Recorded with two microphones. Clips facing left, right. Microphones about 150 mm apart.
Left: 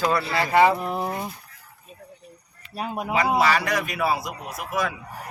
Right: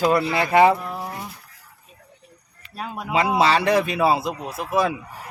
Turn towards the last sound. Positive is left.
turn(degrees=-30)  # may be behind; listen again after turning